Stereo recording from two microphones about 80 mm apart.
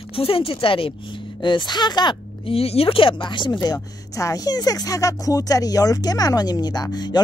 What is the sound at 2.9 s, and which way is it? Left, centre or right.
Speech, left.